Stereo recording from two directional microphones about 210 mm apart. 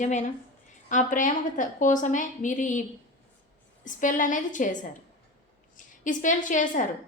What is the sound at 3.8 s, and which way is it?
Speech, 40° left (ahead or behind).